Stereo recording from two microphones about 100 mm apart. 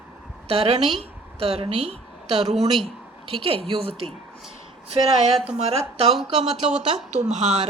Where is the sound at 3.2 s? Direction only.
65° right (ahead or behind).